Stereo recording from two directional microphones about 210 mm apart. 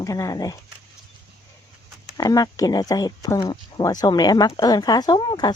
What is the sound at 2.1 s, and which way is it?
Speech, 15° left (ahead or behind).